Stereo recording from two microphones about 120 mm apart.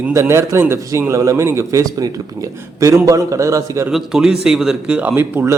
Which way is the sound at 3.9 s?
5° right (ahead or behind).